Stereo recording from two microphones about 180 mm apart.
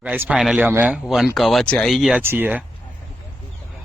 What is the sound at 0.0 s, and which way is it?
Speech, 5° right (ahead or behind).